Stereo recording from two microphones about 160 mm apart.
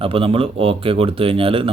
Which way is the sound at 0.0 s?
35° right (ahead or behind).